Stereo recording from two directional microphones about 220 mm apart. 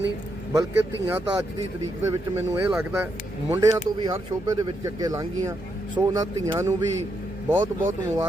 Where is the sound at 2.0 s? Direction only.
15° right (ahead or behind).